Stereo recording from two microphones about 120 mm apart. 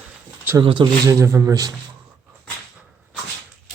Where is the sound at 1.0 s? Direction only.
25° right (ahead or behind).